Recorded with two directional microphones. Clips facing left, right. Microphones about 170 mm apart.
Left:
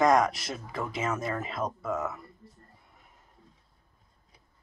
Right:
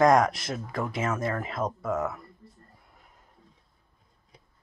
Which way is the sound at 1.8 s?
10° right (ahead or behind).